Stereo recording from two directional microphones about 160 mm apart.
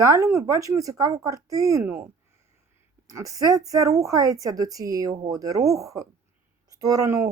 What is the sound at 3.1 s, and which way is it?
A woman's voice, 20° right (ahead or behind).